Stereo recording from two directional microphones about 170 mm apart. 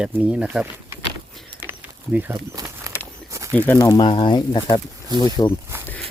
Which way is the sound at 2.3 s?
20° right (ahead or behind).